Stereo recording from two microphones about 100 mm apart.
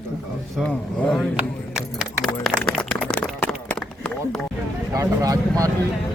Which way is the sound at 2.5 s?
5° left (ahead or behind).